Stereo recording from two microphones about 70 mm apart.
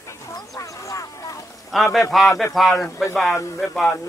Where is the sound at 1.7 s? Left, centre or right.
Centre.